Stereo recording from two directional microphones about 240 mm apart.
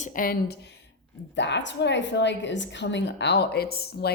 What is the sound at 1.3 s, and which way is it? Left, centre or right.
A woman's voice, left.